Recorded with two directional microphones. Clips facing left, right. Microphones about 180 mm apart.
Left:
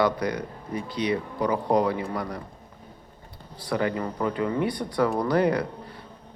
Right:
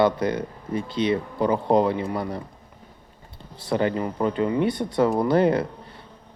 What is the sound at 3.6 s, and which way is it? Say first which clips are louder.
Speech: right 3 dB; 25° right (ahead or behind).